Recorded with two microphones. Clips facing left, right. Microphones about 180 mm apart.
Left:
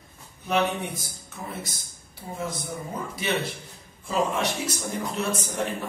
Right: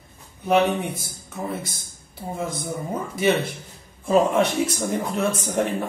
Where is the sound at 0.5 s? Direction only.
55° right (ahead or behind).